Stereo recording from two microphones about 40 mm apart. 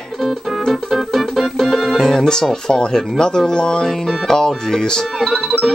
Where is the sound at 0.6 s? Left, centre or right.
Centre.